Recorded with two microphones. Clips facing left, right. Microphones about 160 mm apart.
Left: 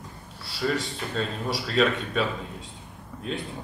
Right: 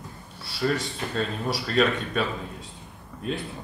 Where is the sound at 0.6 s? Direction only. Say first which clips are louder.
Right 1 dB; centre (ahead or behind).